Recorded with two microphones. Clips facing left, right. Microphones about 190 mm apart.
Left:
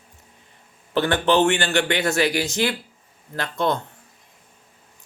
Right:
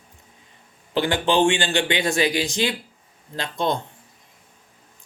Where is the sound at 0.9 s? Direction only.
15° right (ahead or behind).